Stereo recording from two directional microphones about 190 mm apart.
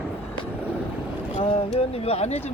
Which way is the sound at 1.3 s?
35° left (ahead or behind).